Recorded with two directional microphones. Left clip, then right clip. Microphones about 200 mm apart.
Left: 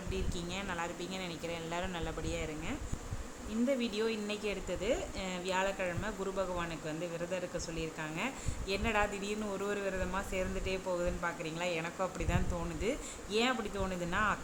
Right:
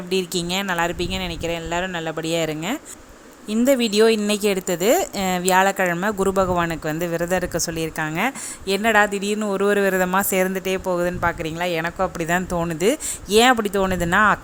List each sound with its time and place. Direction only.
0.1 s a woman's voice: 45° right (ahead or behind)